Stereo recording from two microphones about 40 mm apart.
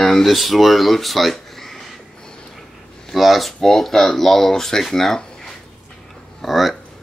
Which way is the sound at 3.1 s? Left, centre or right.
Centre.